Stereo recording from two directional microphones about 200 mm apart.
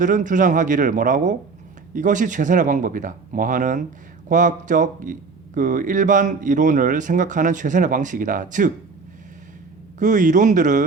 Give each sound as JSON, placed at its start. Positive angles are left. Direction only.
{"t": 0.0, "sound": "speech", "side_deg": -40}
{"t": 10.0, "sound": "speech", "side_deg": -40}